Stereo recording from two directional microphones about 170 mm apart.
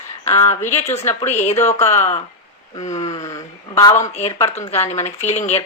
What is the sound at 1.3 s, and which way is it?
Speech, 40° left (ahead or behind).